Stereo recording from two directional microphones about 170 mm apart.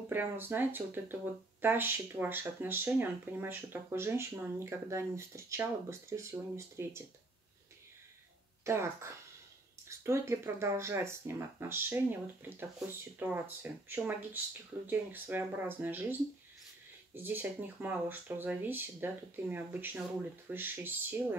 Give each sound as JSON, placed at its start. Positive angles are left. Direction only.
{"t": 0.1, "sound": "speech", "side_deg": -10}
{"t": 8.6, "sound": "speech", "side_deg": -15}